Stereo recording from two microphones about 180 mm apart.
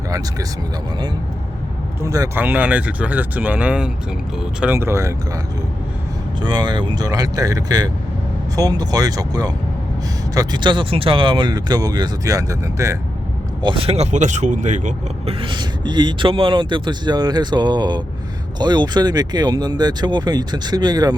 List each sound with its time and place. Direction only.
2.0 s speech: 20° right (ahead or behind)
6.4 s speech: 25° right (ahead or behind)
13.6 s speech: 30° right (ahead or behind)
15.4 s speech: 25° right (ahead or behind)